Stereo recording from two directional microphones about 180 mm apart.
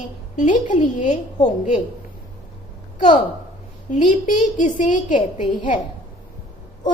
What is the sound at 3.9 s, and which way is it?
A woman's voice, 45° left (ahead or behind).